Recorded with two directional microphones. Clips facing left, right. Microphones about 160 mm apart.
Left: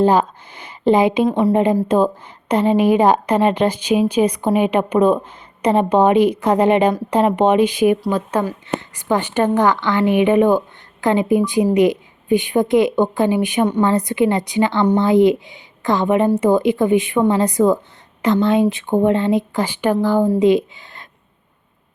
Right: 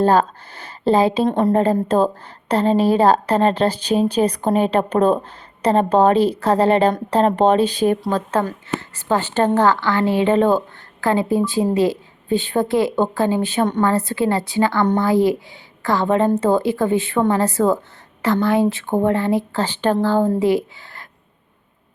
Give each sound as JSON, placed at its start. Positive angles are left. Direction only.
{"t": 0.0, "sound": "speech", "side_deg": 15}
{"t": 1.3, "sound": "speech", "side_deg": 5}
{"t": 1.5, "sound": "a woman's voice", "side_deg": 15}